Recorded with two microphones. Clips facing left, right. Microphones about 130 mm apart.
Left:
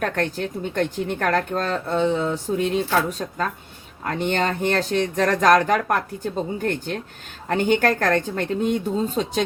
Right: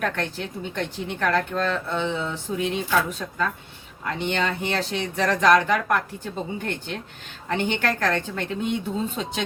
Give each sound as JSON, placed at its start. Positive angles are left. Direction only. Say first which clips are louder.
{"t": 0.0, "sound": "speech", "louder": "left 3 dB", "side_deg": 45}